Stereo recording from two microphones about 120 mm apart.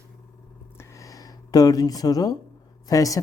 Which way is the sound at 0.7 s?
25° left (ahead or behind).